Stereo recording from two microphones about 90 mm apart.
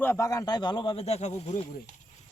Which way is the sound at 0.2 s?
40° left (ahead or behind).